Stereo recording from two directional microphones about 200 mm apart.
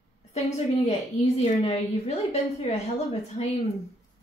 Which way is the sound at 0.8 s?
35° left (ahead or behind).